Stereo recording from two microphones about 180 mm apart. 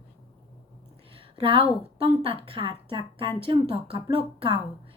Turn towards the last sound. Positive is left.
turn(degrees=-30)  # may be behind; listen again after turning